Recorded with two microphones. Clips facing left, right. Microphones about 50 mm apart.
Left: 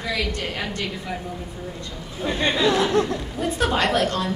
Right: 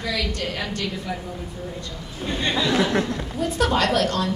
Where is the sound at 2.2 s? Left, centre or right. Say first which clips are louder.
Left 3 dB; left.